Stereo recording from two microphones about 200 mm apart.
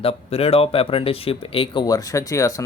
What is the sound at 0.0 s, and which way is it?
Speech, 30° left (ahead or behind).